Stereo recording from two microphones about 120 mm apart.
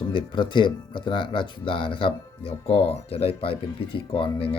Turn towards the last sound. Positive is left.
turn(degrees=50)  # may be behind; listen again after turning